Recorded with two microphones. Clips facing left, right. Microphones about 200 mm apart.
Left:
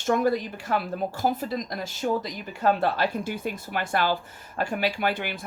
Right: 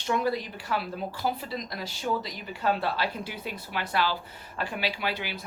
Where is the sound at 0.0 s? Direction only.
45° left (ahead or behind).